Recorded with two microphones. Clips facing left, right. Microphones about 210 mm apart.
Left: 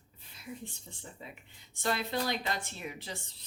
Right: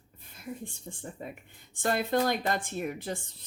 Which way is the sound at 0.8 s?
50° right (ahead or behind).